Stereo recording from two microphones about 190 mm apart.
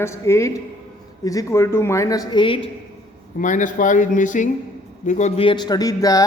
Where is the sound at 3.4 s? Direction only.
40° left (ahead or behind).